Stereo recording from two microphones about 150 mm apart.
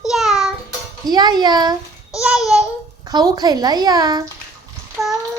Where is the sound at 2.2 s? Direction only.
5° right (ahead or behind).